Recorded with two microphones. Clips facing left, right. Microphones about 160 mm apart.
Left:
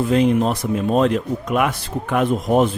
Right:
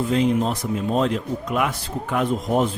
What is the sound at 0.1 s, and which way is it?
Speech, 60° left (ahead or behind).